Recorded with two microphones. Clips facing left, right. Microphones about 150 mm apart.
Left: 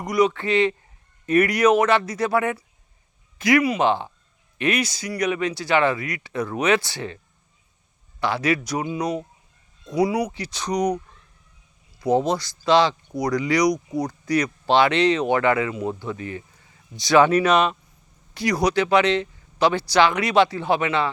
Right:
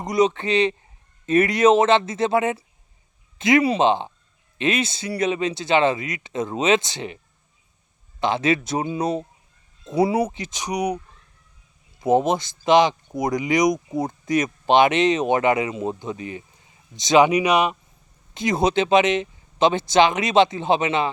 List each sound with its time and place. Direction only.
0.0 s speech: 20° right (ahead or behind)
8.2 s speech: 20° right (ahead or behind)
11.9 s speech: 20° right (ahead or behind)
18.3 s speech: 25° right (ahead or behind)